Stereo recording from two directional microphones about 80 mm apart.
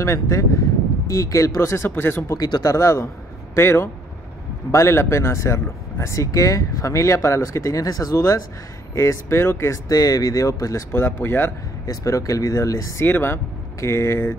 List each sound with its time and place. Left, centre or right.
0.0 s speech: left
2.3 s speech: left
2.7 s speech: left
9.8 s speech: left
10.9 s speech: left
11.9 s speech: left
13.0 s speech: left
13.7 s speech: left